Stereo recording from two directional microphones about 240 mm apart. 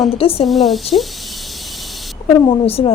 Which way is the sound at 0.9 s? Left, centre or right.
Centre.